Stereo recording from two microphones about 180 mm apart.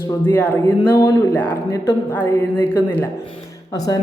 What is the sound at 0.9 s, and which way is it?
Speech, 15° left (ahead or behind).